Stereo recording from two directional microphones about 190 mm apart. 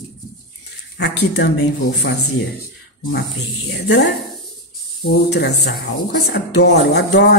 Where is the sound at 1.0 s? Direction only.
60° left (ahead or behind).